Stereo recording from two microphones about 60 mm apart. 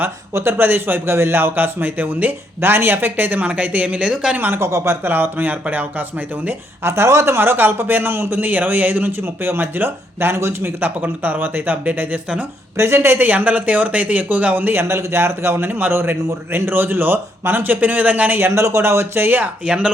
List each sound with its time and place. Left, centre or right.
0.3 s speech: right
2.6 s speech: right; by 4.4 s centre
4.4 s speech: right
4.6 s speech: right
6.8 s speech: right
7.3 s speech: right
12.7 s speech: right
13.1 s speech: right
19.6 s speech: centre